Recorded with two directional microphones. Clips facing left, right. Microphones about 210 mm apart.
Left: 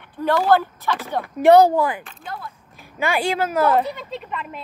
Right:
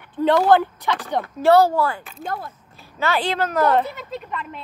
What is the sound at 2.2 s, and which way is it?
Speech, 50° right (ahead or behind).